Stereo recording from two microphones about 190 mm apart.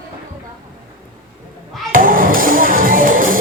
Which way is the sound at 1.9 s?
50° right (ahead or behind).